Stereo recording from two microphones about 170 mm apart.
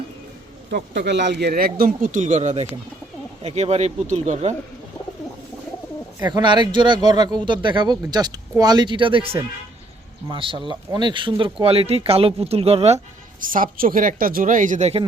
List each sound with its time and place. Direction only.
0.7 s speech: 85° right; by 4.5 s 40° right (ahead or behind)
6.1 s speech: 25° right (ahead or behind)
13.4 s speech: 55° right (ahead or behind)